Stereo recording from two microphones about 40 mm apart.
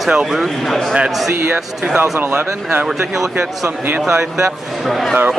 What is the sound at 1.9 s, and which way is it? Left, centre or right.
Speech, right.